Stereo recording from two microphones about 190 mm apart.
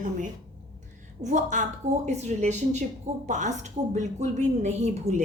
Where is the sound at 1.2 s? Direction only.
40° right (ahead or behind).